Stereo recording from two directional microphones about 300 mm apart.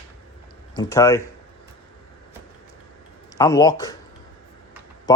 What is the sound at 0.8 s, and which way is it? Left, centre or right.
Speech, centre.